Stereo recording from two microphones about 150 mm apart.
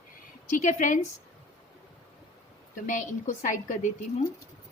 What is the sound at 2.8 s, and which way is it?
A woman's voice, 55° left (ahead or behind).